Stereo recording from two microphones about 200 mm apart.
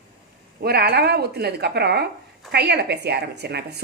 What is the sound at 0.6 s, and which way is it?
A woman's voice, 50° right (ahead or behind).